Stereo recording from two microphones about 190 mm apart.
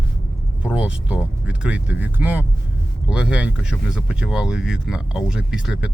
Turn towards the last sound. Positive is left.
turn(degrees=-5)  # may be behind; listen again after turning